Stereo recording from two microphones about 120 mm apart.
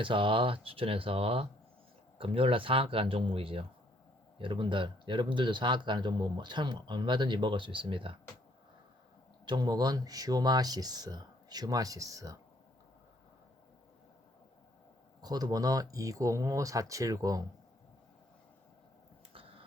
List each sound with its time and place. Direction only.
0.0 s speech: 45° right (ahead or behind)
9.5 s speech: 35° right (ahead or behind)
15.2 s speech: 35° right (ahead or behind)
19.3 s a sound: 50° right (ahead or behind)